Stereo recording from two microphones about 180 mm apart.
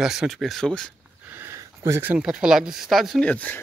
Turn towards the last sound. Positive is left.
turn(degrees=5)  # may be behind; listen again after turning